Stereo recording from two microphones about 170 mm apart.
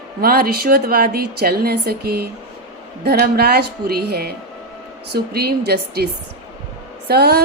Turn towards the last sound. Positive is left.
turn(degrees=-70)  # may be behind; listen again after turning